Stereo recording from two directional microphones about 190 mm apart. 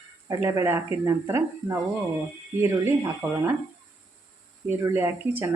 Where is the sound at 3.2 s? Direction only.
15° right (ahead or behind).